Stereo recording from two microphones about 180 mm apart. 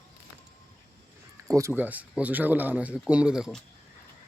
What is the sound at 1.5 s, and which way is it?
Speech, 15° right (ahead or behind).